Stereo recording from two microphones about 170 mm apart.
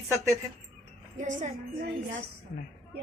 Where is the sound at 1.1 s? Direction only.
45° right (ahead or behind).